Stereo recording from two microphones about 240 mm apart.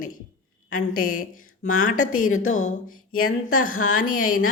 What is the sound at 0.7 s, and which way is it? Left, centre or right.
A woman's voice, left.